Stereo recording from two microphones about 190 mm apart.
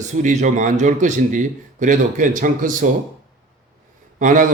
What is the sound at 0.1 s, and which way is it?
Speech, 40° right (ahead or behind).